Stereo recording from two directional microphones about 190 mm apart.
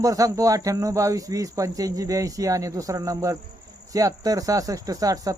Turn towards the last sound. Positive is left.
turn(degrees=-20)  # may be behind; listen again after turning